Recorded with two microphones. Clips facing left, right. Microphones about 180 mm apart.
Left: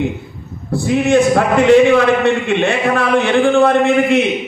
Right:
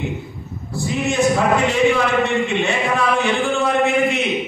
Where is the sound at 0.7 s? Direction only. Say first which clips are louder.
Left 8 dB; 60° left (ahead or behind).